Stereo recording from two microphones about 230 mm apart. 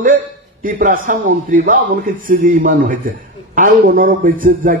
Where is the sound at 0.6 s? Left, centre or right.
Right.